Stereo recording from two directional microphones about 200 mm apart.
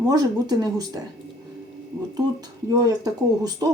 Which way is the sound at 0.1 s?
20° right (ahead or behind).